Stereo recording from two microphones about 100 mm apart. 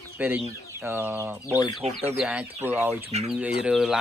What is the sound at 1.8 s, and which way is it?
Speech, 90° right.